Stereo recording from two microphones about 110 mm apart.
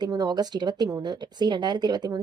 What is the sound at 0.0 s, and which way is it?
Speech, 40° right (ahead or behind).